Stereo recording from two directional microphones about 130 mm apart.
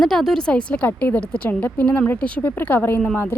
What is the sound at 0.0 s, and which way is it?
A woman's voice, 5° left (ahead or behind).